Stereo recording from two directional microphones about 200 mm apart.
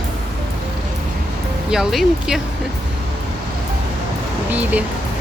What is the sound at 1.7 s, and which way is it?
Speech, centre (ahead or behind).